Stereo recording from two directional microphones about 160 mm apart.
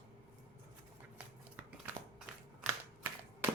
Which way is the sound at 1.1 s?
10° right (ahead or behind).